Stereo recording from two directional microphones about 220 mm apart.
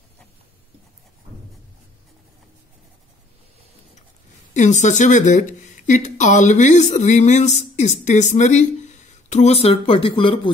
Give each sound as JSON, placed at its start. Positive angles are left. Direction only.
{"t": 4.6, "sound": "speech", "side_deg": 35}